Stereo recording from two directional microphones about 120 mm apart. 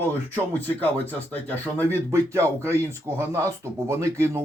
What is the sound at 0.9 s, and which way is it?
Speech, 15° left (ahead or behind).